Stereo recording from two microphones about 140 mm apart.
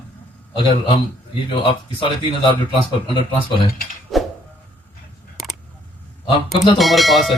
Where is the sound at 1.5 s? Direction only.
40° left (ahead or behind).